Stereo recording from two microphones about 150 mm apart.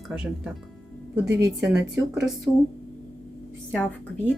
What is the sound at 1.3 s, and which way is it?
Speech, 20° right (ahead or behind).